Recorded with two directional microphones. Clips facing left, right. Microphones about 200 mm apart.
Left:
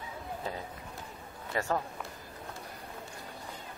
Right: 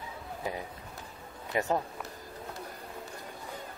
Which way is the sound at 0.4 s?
15° right (ahead or behind).